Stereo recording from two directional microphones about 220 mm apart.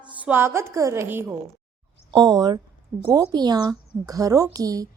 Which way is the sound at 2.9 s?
10° right (ahead or behind).